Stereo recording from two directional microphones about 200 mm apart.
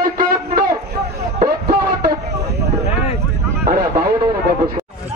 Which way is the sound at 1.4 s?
50° right (ahead or behind).